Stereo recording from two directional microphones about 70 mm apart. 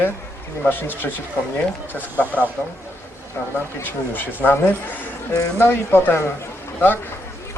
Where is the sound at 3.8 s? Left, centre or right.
Left.